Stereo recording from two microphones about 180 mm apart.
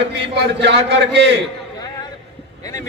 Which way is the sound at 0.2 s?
70° right (ahead or behind).